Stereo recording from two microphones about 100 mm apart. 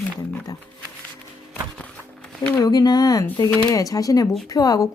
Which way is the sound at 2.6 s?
40° left (ahead or behind).